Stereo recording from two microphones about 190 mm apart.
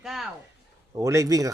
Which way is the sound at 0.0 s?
Centre (ahead or behind).